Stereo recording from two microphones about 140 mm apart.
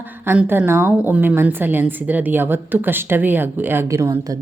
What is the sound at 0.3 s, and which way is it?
Speech, 15° right (ahead or behind).